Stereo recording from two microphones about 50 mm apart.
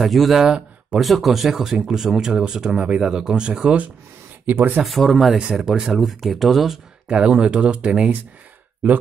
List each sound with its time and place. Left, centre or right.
0.0 s speech: centre
0.4 s speech: centre
0.9 s speech: centre; by 3.9 s right
4.5 s speech: right
4.8 s speech: centre
5.5 s speech: centre
7.1 s speech: right